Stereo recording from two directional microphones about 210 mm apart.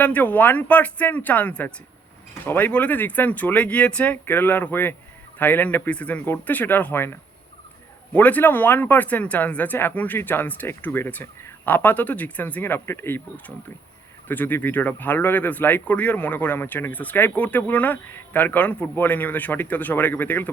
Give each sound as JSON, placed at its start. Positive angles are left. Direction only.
{"t": 0.0, "sound": "speech", "side_deg": 5}